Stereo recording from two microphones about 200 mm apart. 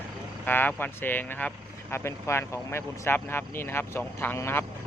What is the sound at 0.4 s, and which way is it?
Speech, 10° left (ahead or behind).